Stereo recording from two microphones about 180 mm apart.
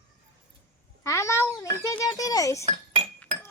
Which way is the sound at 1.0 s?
15° left (ahead or behind).